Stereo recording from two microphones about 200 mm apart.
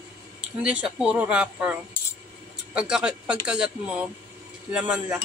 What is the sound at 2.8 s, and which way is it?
A woman's voice, 5° right (ahead or behind).